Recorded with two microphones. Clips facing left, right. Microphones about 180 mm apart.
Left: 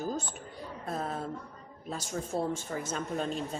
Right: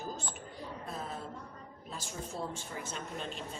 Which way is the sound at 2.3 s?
55° left (ahead or behind).